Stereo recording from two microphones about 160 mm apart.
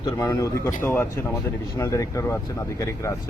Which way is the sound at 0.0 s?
20° left (ahead or behind).